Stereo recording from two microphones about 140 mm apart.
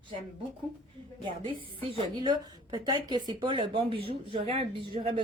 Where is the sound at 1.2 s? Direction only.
35° right (ahead or behind).